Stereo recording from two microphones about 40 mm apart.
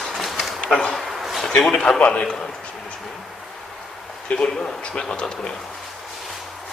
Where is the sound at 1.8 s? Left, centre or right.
Left.